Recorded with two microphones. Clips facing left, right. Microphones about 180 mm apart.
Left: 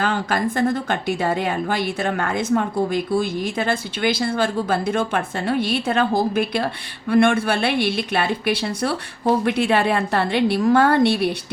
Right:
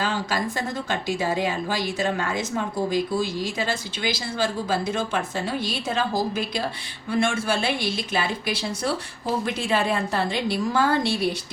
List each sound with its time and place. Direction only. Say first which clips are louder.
0.0 s a woman's voice: left 4 dB; 55° left (ahead or behind)